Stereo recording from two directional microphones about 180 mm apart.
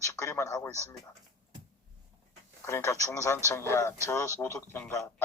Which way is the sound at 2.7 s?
15° left (ahead or behind).